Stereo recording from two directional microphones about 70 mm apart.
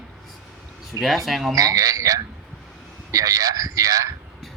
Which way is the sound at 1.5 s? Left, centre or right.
Right.